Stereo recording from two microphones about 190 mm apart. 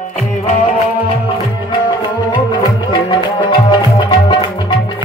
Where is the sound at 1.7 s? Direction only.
25° left (ahead or behind).